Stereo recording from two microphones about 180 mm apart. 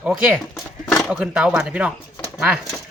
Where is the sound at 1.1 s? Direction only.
5° right (ahead or behind).